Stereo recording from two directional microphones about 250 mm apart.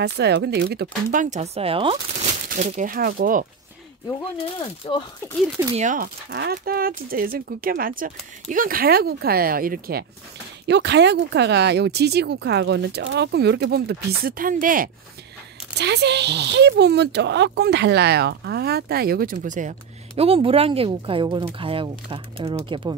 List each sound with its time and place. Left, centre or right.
0.0 s speech: right
4.8 s speech: left
5.7 s speech: right